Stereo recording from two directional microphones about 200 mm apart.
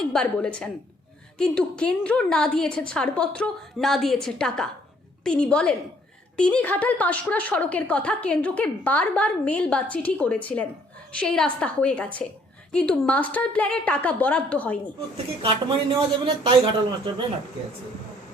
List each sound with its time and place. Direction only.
0.0 s a woman's voice: 5° left (ahead or behind)
15.4 s speech: 25° right (ahead or behind)